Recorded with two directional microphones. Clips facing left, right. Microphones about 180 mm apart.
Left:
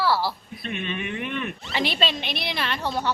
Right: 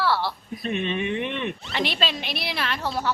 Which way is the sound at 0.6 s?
30° right (ahead or behind).